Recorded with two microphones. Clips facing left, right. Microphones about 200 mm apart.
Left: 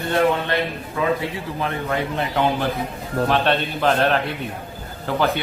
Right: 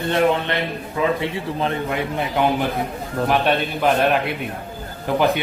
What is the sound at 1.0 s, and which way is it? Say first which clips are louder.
Speech: right 1 dB; 20° right (ahead or behind).